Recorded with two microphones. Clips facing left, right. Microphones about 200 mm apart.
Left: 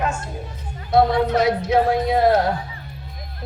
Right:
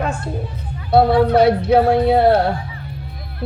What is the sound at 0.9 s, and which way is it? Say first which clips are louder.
Speech: right 4 dB; 30° right (ahead or behind).